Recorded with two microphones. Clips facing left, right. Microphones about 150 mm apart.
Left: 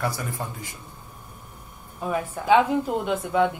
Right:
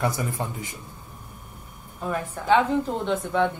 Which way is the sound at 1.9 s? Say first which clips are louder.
Left 2 dB; 5° left (ahead or behind).